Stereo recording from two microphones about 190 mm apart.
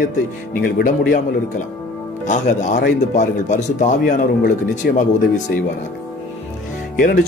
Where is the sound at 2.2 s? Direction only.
40° left (ahead or behind).